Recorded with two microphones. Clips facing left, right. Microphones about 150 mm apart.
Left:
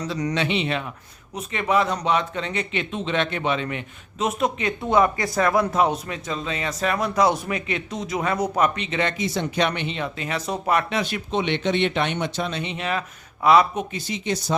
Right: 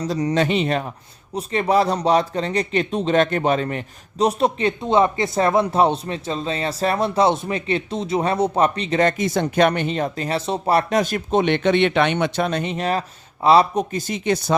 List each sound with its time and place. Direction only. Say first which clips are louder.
0.0 s speech: right 4 dB; 30° right (ahead or behind)
0.3 s speech: right 6 dB; 40° right (ahead or behind)